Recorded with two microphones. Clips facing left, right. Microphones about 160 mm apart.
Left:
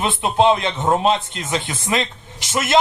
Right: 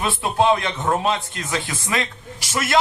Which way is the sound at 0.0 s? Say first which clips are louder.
Left 3 dB; 20° left (ahead or behind).